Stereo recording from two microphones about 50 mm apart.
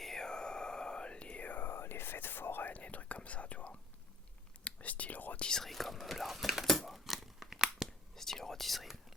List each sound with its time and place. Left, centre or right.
0.0 s whispering: centre; by 1.6 s left
1.6 s whispering: left
5.4 s speech: centre
5.6 s whispering: centre
8.1 s whispering: centre